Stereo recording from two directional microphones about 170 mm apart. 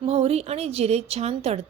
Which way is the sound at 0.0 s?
35° right (ahead or behind).